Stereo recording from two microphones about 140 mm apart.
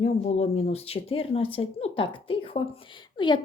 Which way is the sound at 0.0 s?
50° left (ahead or behind).